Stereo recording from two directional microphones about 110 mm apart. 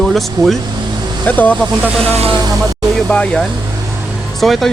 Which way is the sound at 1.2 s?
15° left (ahead or behind).